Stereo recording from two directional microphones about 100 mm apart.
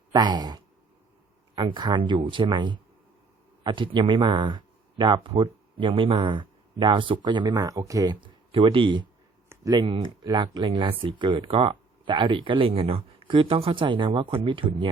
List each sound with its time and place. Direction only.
0.1 s speech: 45° right (ahead or behind)
8.5 s speech: 60° right (ahead or behind)
10.2 s speech: 45° right (ahead or behind)